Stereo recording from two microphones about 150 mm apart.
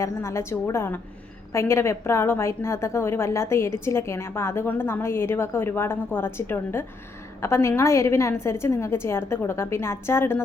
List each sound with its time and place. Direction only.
0.0 s a woman's voice: 20° left (ahead or behind)